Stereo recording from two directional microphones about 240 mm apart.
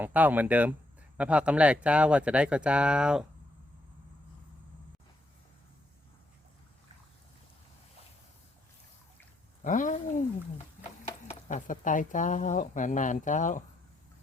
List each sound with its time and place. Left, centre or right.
0.0 s speech: centre
9.6 s speech: left
11.3 s speech: left